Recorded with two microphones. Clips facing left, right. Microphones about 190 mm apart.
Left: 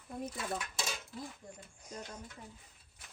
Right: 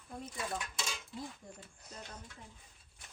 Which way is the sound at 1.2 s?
10° left (ahead or behind).